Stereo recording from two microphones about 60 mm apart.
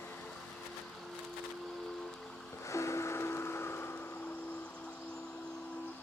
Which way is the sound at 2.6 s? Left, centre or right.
Left.